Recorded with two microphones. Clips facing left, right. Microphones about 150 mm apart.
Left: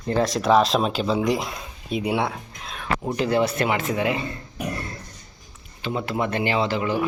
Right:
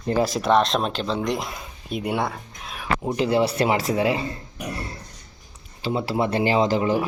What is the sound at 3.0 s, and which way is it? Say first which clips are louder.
Speech: right 1 dB; 25° right (ahead or behind).